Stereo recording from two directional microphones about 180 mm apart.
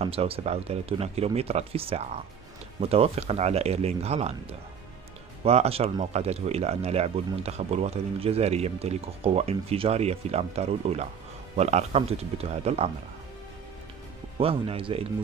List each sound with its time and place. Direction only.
0.0 s speech: 30° right (ahead or behind)
14.4 s speech: 30° right (ahead or behind)